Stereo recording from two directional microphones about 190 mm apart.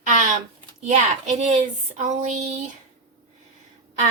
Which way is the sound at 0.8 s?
35° right (ahead or behind).